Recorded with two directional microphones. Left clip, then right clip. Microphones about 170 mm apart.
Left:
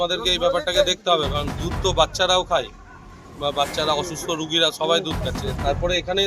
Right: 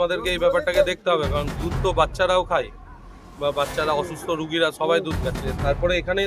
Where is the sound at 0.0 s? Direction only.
5° right (ahead or behind).